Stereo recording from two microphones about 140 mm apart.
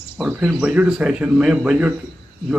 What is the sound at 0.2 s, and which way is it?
Speech, 5° right (ahead or behind).